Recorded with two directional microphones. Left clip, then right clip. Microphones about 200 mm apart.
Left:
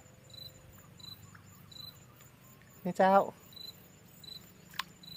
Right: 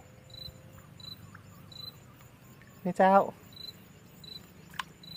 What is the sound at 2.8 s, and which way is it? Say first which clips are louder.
Speech: right 3 dB; 25° left (ahead or behind).